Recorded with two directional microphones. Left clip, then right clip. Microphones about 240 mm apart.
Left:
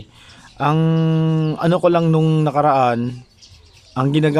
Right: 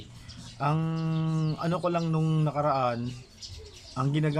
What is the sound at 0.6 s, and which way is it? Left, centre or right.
A man's voice, left.